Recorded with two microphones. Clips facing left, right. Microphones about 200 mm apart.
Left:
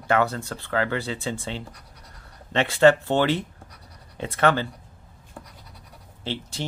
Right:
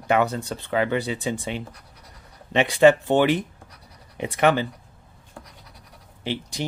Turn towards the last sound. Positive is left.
turn(degrees=-15)  # may be behind; listen again after turning